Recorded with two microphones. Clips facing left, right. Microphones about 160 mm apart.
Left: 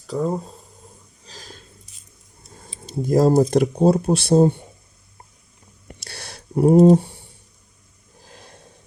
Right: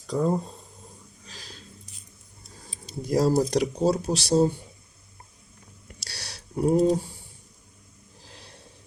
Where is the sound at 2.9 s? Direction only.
50° left (ahead or behind).